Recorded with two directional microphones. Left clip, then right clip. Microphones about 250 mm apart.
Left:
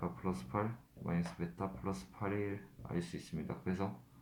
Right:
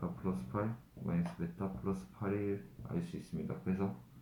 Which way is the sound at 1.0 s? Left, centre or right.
Left.